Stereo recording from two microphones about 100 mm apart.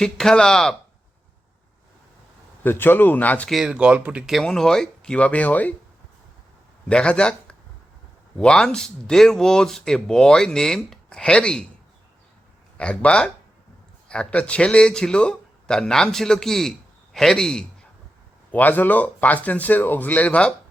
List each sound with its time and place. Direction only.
0.0 s speech: 5° left (ahead or behind)
2.6 s speech: 20° left (ahead or behind)
3.5 s speech: 5° right (ahead or behind)
4.3 s a man's voice: centre (ahead or behind)
6.8 s speech: 10° left (ahead or behind)
12.7 s a man's voice: 10° left (ahead or behind)
18.5 s a man's voice: 15° left (ahead or behind)